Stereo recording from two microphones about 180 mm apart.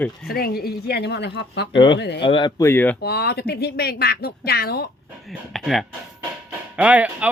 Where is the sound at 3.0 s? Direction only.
60° left (ahead or behind).